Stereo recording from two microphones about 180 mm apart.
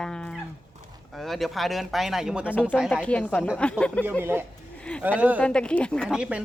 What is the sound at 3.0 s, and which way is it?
Speech, 5° left (ahead or behind).